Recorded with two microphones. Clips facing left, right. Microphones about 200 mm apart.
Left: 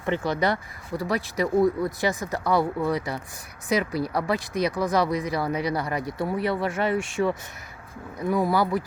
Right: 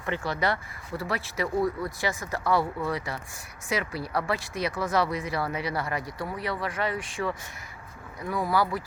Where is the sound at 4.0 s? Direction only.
20° left (ahead or behind).